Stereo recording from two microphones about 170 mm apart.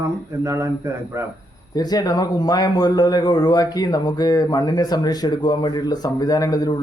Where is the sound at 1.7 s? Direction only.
20° left (ahead or behind).